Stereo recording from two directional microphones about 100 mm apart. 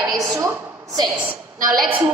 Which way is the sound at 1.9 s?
15° right (ahead or behind).